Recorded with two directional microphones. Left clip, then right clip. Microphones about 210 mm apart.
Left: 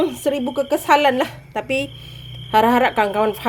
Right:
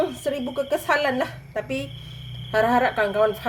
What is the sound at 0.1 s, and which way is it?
A woman's voice, 40° left (ahead or behind).